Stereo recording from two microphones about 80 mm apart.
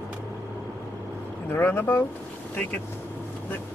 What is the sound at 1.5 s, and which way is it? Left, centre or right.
Speech, left.